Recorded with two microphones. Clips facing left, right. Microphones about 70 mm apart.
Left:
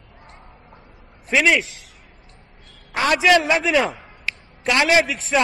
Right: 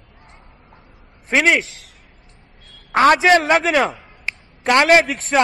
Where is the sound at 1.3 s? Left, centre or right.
Right.